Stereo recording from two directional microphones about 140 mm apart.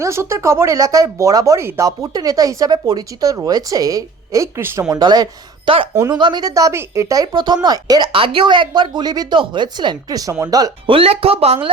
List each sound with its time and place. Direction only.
0.0 s speech: 20° right (ahead or behind)
10.8 s speech: 40° right (ahead or behind)